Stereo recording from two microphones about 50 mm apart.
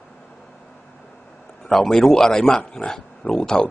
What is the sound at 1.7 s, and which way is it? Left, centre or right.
Speech, centre.